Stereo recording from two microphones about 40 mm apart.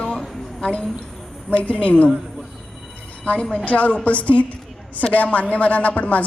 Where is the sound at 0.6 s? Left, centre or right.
Left.